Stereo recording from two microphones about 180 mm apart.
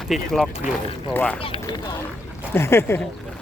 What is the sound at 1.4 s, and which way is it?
Speech, 30° left (ahead or behind).